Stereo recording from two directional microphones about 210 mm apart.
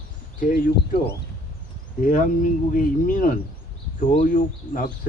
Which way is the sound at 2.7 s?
40° left (ahead or behind).